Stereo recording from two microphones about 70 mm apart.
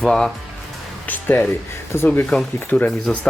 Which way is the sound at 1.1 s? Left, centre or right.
Left.